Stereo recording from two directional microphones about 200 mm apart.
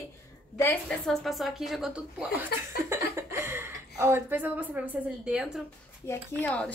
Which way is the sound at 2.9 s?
15° right (ahead or behind).